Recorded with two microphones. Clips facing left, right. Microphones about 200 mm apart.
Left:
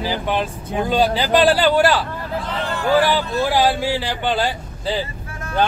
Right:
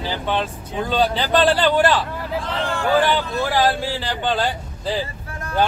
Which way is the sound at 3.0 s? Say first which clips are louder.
Left 2 dB; 10° left (ahead or behind).